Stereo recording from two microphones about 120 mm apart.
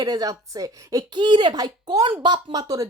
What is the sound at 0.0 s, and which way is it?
Speech, 30° right (ahead or behind).